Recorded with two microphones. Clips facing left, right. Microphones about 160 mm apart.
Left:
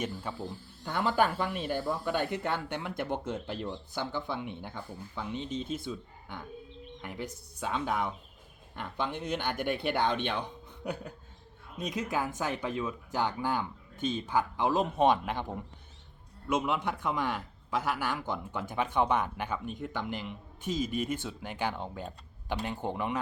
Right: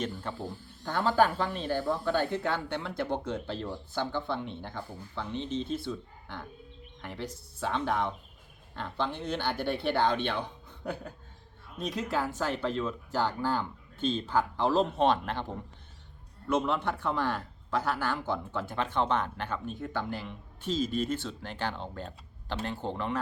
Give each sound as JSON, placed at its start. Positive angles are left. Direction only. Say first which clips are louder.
{"t": 0.0, "sound": "speech", "louder": "right 1 dB", "side_deg": 10}